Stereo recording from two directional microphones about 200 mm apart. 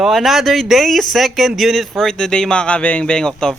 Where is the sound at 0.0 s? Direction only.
Centre (ahead or behind).